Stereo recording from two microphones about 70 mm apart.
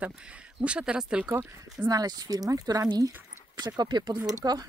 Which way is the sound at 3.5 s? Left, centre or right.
Right.